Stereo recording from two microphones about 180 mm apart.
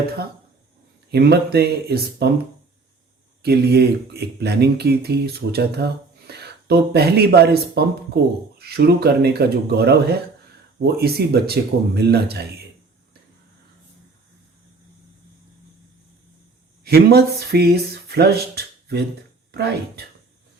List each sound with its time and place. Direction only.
1.1 s speech: 65° right (ahead or behind)
3.4 s speech: 65° right (ahead or behind)
16.8 s speech: 60° right (ahead or behind)